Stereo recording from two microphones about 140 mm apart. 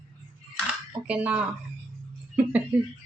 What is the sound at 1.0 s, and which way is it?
Speech, 10° right (ahead or behind).